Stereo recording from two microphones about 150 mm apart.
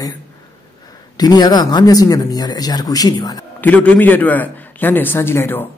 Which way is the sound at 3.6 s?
10° left (ahead or behind).